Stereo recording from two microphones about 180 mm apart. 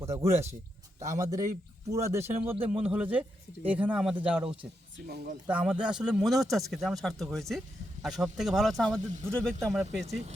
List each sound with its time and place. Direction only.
0.0 s speech: 15° right (ahead or behind)
1.0 s speech: 40° right (ahead or behind)
1.9 s speech: 15° right (ahead or behind)
5.0 s speech: 55° right (ahead or behind)
5.5 s a man's voice: 10° right (ahead or behind)
9.0 s speech: 40° right (ahead or behind)
9.3 s a man's voice: 5° left (ahead or behind)
10.1 s speech: 40° right (ahead or behind)